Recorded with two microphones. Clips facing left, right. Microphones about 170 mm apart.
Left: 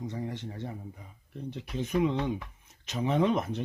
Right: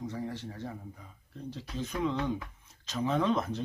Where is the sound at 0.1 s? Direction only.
20° left (ahead or behind).